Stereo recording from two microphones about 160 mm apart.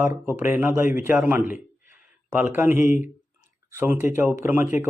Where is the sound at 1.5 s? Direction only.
55° left (ahead or behind).